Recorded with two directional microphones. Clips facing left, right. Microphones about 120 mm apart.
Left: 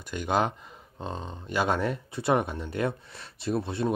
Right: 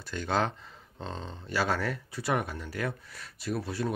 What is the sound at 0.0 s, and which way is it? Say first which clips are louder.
Speech: left 3 dB; 15° left (ahead or behind).